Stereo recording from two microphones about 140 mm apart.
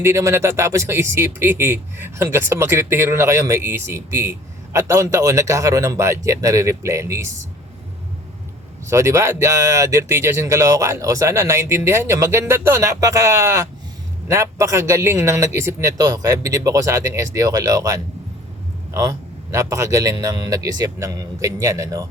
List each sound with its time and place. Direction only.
0.0 s speech: 20° right (ahead or behind)
8.9 s speech: 20° right (ahead or behind)